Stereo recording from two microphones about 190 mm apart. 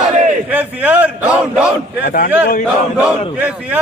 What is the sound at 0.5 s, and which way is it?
A man's voice, 10° right (ahead or behind).